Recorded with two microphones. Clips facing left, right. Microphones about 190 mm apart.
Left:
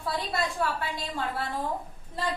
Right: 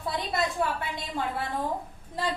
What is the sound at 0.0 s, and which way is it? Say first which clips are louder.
A woman's voice: right 1 dB; 20° right (ahead or behind).